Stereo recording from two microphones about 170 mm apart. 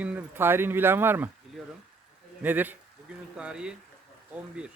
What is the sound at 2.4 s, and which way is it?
Speech, 10° right (ahead or behind).